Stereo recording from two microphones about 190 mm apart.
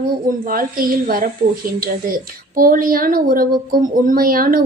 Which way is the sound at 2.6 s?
50° right (ahead or behind).